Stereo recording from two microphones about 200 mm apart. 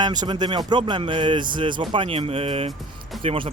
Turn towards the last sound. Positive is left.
turn(degrees=-30)  # may be behind; listen again after turning